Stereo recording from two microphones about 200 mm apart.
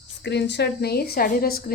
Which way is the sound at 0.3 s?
60° left (ahead or behind).